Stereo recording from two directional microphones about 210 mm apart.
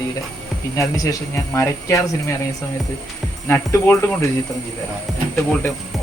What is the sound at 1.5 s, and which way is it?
Speech, 15° left (ahead or behind).